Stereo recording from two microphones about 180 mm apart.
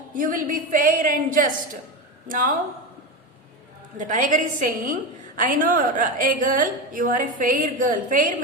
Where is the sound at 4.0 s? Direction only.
45° right (ahead or behind).